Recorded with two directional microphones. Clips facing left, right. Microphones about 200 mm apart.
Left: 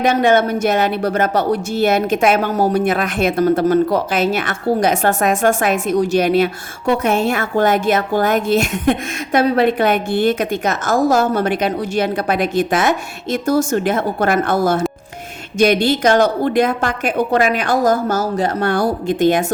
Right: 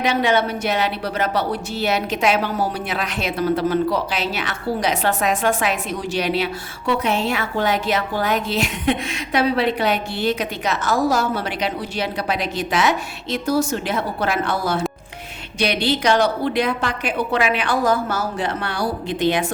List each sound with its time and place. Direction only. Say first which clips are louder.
0.0 s a woman's voice: left 5 dB; 50° left (ahead or behind)